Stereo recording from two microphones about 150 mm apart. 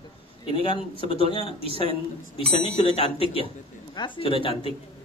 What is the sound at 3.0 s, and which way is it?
A man's voice, 40° left (ahead or behind).